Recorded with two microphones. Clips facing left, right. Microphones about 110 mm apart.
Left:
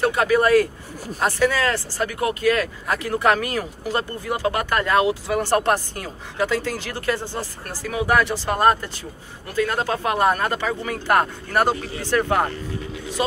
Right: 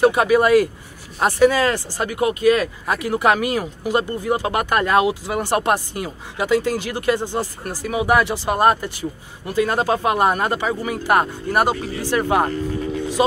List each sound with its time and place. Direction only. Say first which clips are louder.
0.0 s speech: right 3 dB; 15° right (ahead or behind)